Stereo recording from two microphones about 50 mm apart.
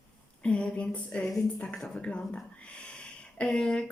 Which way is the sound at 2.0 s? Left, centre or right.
Left.